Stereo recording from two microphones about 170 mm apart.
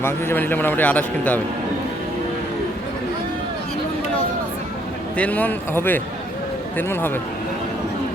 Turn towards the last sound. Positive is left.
turn(degrees=10)  # may be behind; listen again after turning